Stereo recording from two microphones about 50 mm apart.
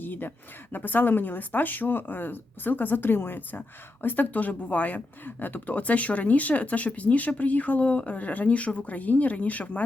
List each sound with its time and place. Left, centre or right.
0.0 s speech: left